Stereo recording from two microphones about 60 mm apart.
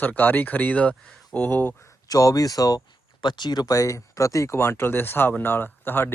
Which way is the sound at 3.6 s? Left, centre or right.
Left.